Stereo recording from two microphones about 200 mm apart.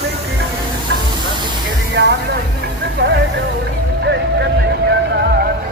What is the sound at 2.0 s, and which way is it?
Music, 60° right (ahead or behind).